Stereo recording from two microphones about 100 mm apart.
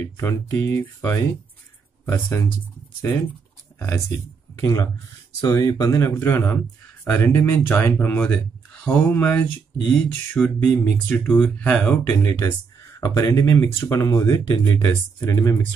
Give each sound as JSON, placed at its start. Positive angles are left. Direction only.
{"t": 0.0, "sound": "speech", "side_deg": 30}
{"t": 4.6, "sound": "speech", "side_deg": 35}
{"t": 13.0, "sound": "speech", "side_deg": 35}